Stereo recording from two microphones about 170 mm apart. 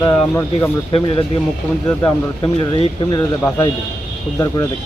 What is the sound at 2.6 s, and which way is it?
Speech, 30° left (ahead or behind).